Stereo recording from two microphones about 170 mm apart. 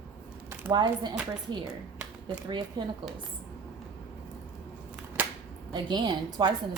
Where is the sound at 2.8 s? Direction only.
25° right (ahead or behind).